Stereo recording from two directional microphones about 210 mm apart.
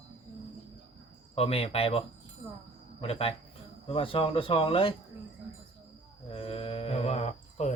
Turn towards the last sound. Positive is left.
turn(degrees=30)  # may be behind; listen again after turning